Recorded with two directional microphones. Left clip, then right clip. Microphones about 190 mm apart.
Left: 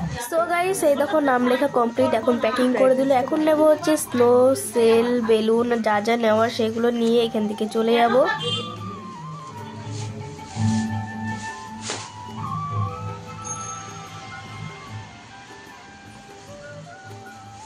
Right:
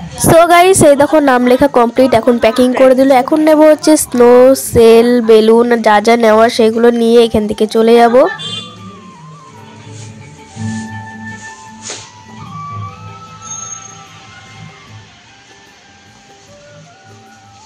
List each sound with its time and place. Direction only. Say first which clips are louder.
0.4 s speech: right 14 dB; 45° right (ahead or behind)